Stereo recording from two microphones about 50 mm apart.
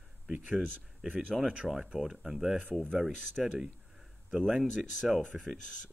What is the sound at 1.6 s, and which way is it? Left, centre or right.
Speech, left.